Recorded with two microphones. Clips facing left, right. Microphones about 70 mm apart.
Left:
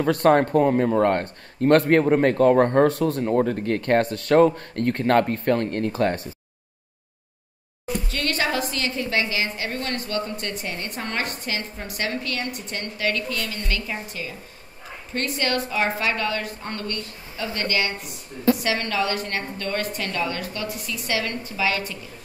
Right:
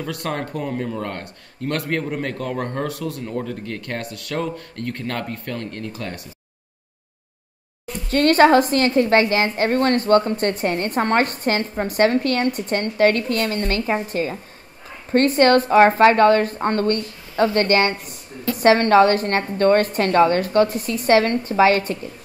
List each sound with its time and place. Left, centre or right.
0.0 s speech: left
8.1 s a woman's voice: right